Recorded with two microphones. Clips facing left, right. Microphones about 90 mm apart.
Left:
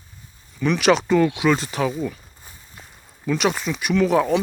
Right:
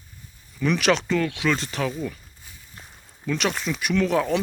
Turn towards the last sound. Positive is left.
turn(degrees=5)  # may be behind; listen again after turning